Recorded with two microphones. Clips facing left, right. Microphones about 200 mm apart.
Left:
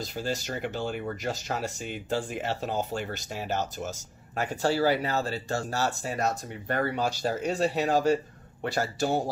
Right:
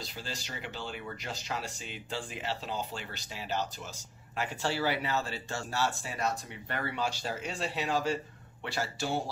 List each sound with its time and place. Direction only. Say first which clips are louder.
0.0 s speech: left 10 dB; 45° left (ahead or behind)